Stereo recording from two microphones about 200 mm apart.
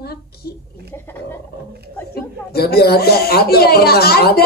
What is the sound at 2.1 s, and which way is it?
Speech, 50° left (ahead or behind).